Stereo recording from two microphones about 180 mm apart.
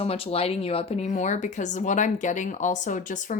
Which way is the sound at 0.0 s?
35° left (ahead or behind).